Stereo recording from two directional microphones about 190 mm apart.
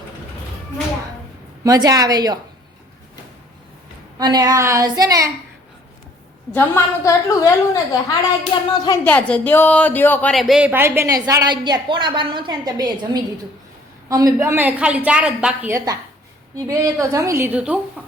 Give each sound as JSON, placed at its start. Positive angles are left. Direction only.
{"t": 1.6, "sound": "a woman's voice", "side_deg": -20}
{"t": 4.2, "sound": "speech", "side_deg": -20}
{"t": 6.5, "sound": "a woman's voice", "side_deg": 10}
{"t": 8.5, "sound": "a sound", "side_deg": 25}
{"t": 9.0, "sound": "speech", "side_deg": 5}
{"t": 14.1, "sound": "a woman's voice", "side_deg": -20}